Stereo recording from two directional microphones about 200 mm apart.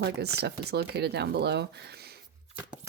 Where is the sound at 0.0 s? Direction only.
55° right (ahead or behind).